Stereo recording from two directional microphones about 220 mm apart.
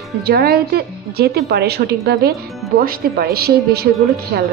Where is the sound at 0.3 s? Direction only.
45° right (ahead or behind).